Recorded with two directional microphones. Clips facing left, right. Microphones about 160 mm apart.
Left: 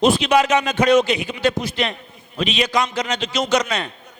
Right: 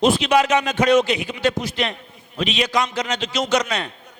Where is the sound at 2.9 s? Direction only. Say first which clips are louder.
Left 1 dB; 20° left (ahead or behind).